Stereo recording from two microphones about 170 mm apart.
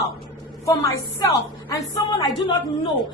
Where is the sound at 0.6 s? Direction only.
20° left (ahead or behind).